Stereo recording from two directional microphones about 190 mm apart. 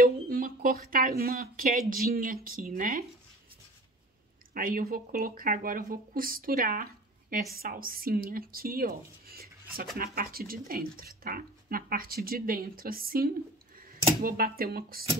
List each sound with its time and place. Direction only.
0.0 s speech: 50° right (ahead or behind)
4.6 s speech: 50° right (ahead or behind)